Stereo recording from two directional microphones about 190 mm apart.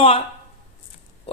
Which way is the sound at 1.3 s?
30° left (ahead or behind).